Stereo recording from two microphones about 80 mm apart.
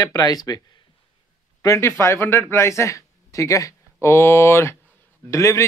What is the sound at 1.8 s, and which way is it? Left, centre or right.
A man's voice, left.